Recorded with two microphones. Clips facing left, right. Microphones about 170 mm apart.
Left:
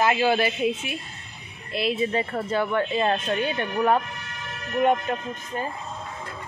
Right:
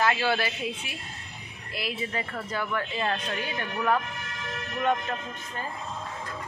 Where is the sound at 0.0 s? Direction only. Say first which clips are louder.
Left 5 dB; 20° left (ahead or behind).